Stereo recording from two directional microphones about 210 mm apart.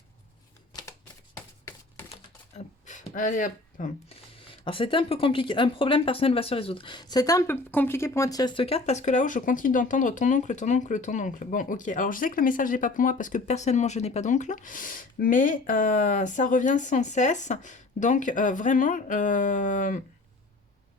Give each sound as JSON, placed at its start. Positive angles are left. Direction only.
{"t": 1.4, "sound": "a sound", "side_deg": 10}
{"t": 2.8, "sound": "speech", "side_deg": 35}
{"t": 4.6, "sound": "speech", "side_deg": 25}